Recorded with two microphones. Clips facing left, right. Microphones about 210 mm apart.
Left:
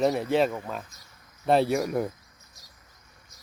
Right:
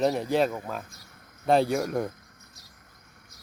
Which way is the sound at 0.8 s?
55° right (ahead or behind).